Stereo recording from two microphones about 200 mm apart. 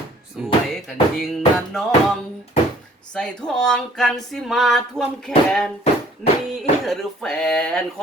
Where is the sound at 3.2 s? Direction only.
5° left (ahead or behind).